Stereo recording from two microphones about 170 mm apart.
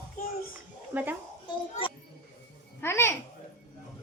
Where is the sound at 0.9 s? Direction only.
10° right (ahead or behind).